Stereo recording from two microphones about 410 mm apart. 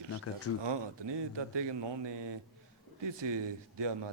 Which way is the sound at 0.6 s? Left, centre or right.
Right.